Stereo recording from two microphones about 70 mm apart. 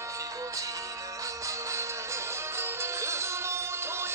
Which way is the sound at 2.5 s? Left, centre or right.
Right.